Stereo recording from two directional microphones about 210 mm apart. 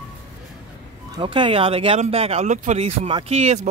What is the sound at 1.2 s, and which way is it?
Speech, 25° right (ahead or behind).